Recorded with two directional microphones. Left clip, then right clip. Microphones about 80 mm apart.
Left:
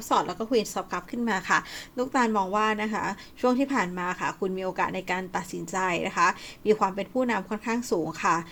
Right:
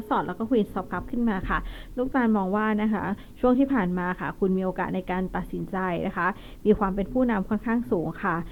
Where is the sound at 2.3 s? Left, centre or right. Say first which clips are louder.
Left 1 dB; right.